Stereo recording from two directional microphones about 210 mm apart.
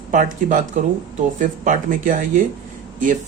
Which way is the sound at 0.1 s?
40° right (ahead or behind).